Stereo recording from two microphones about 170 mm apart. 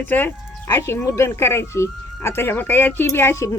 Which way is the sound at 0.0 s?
10° left (ahead or behind).